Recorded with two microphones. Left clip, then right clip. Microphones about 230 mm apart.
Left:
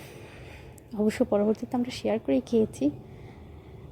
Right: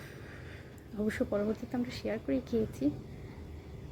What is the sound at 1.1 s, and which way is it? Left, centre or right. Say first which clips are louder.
A woman's voice: left 8 dB; left.